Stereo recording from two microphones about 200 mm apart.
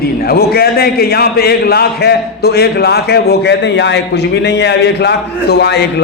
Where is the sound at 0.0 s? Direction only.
50° left (ahead or behind).